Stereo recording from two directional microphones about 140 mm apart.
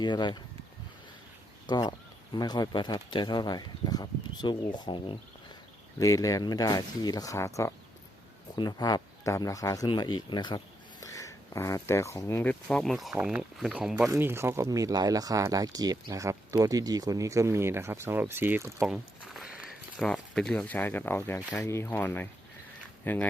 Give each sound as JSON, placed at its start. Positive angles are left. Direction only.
{"t": 0.0, "sound": "speech", "side_deg": 30}
{"t": 1.6, "sound": "speech", "side_deg": 30}
{"t": 6.0, "sound": "speech", "side_deg": 25}
{"t": 11.0, "sound": "speech", "side_deg": 20}
{"t": 14.1, "sound": "speech", "side_deg": -15}
{"t": 18.9, "sound": "a sound", "side_deg": 0}
{"t": 20.0, "sound": "speech", "side_deg": 5}